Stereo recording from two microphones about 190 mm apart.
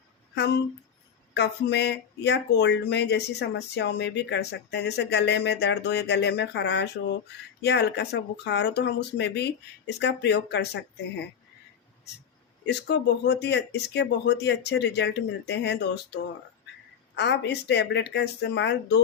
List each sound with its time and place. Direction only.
0.3 s speech: 60° left (ahead or behind)
12.6 s speech: 60° left (ahead or behind)